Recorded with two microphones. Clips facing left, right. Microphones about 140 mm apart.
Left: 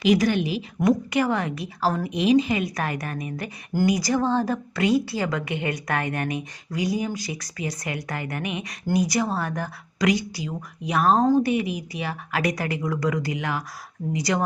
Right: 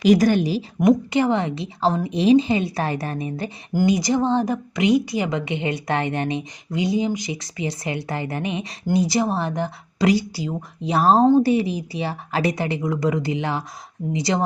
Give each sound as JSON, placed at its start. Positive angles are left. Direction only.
{"t": 0.0, "sound": "a woman's voice", "side_deg": -40}
{"t": 0.8, "sound": "speech", "side_deg": -25}